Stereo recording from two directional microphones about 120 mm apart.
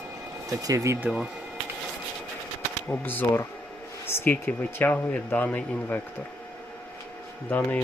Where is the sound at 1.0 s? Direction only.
5° right (ahead or behind).